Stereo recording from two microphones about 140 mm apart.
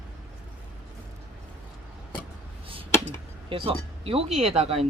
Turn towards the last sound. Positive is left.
turn(degrees=-45)  # may be behind; listen again after turning